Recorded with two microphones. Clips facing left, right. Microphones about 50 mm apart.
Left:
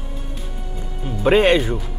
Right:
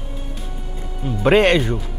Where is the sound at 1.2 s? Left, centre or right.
Centre.